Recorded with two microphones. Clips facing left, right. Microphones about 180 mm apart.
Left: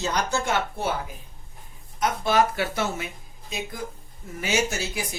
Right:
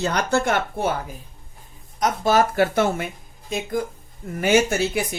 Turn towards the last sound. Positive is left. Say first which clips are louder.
# right 7 dB
turn(degrees=-60)  # may be behind; listen again after turning